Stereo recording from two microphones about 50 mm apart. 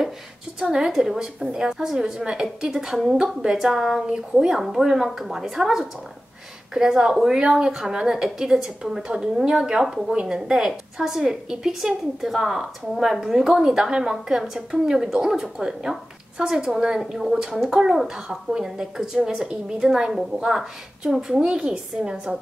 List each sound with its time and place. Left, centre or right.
0.6 s a woman's voice: centre
4.1 s a woman's voice: centre
4.6 s a woman's voice: centre
9.0 s a woman's voice: centre